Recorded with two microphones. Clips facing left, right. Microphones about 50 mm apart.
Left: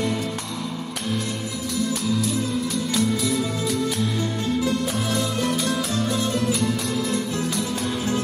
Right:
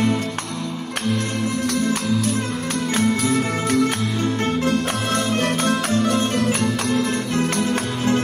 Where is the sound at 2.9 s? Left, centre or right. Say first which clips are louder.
Right 4 dB; right.